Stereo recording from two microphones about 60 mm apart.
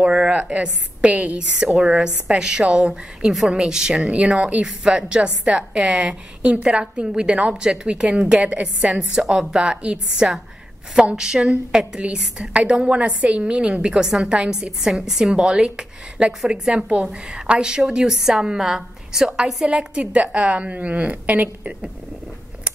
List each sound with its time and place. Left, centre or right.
0.0 s a woman's voice: centre